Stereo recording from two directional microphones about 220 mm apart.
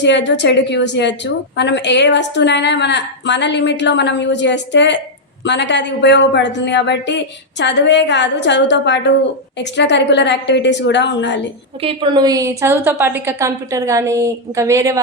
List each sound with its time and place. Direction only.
0.0 s a woman's voice: 55° left (ahead or behind)
11.8 s a woman's voice: 25° right (ahead or behind)